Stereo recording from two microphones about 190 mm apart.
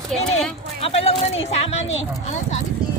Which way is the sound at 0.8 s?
30° left (ahead or behind).